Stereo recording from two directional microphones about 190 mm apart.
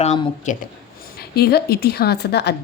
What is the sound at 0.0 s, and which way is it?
Speech, 35° left (ahead or behind).